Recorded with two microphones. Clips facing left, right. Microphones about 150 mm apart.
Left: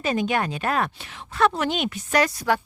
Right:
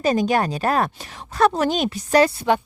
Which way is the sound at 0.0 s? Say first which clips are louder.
Right 5 dB; 40° right (ahead or behind).